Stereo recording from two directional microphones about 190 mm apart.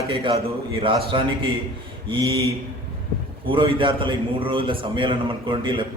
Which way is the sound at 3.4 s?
25° right (ahead or behind).